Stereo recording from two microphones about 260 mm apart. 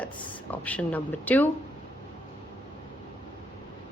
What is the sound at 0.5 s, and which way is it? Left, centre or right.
Speech, centre.